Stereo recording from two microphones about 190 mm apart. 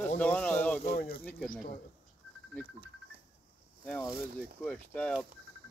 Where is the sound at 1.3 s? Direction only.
5° left (ahead or behind).